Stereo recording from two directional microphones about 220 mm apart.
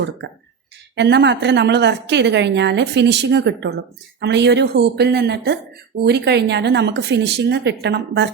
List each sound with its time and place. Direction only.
0.9 s a woman's voice: 50° right (ahead or behind)